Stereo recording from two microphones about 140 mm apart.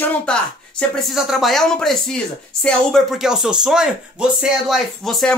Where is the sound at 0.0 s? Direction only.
10° left (ahead or behind).